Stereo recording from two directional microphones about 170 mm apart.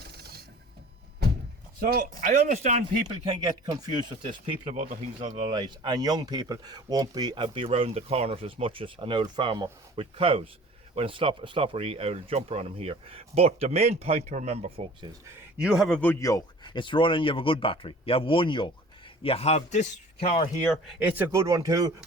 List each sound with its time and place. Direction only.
0.0 s a sound: 70° right (ahead or behind)
1.9 s speech: 50° right (ahead or behind)
3.1 s speech: 25° right (ahead or behind)
15.5 s speech: 5° right (ahead or behind)
16.0 s speech: 15° left (ahead or behind); by 20.3 s 40° left (ahead or behind)
20.8 s speech: 10° right (ahead or behind)